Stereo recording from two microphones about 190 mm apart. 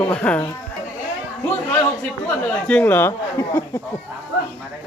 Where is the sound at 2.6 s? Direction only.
10° left (ahead or behind).